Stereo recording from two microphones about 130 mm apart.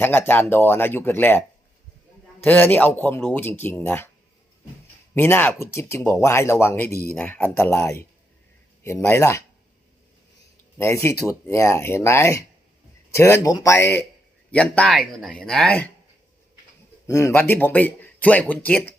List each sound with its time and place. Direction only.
0.0 s speech: 15° left (ahead or behind)
2.4 s speech: 15° left (ahead or behind)
5.1 s speech: 15° left (ahead or behind)
10.8 s speech: 20° left (ahead or behind)
17.1 s speech: 20° left (ahead or behind)